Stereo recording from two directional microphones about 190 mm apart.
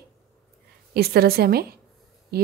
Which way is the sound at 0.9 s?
55° right (ahead or behind).